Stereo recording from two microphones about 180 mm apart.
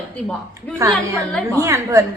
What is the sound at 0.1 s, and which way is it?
A woman's voice, 10° left (ahead or behind).